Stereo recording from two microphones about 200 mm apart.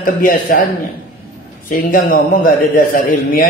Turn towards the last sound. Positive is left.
turn(degrees=40)  # may be behind; listen again after turning